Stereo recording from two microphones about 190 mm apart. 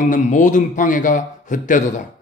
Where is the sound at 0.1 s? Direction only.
40° left (ahead or behind).